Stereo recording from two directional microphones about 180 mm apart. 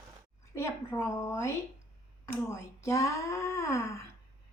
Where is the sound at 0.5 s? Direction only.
15° left (ahead or behind).